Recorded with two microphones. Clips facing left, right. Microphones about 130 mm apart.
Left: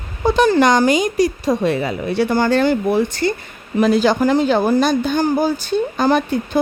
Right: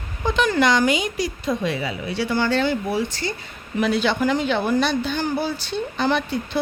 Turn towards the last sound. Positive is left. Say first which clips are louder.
# left 6 dB
turn(degrees=45)  # may be behind; listen again after turning